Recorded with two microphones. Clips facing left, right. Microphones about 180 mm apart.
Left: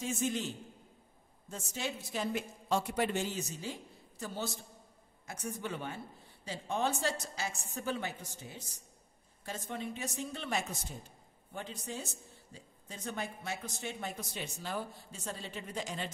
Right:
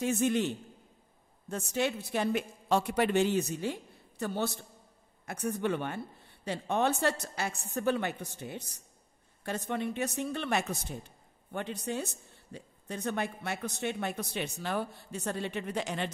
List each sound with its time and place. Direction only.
0.0 s a woman's voice: 65° right (ahead or behind)